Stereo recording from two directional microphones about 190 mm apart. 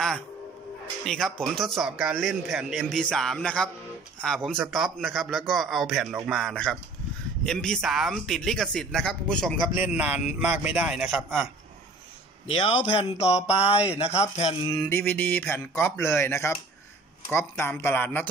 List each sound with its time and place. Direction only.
1.0 s a man's voice: 5° left (ahead or behind)
9.8 s a man's voice: 10° right (ahead or behind)
12.4 s a man's voice: 30° left (ahead or behind)
13.5 s a sound: 30° left (ahead or behind)
14.7 s a man's voice: 20° left (ahead or behind)
15.0 s speech: 10° left (ahead or behind)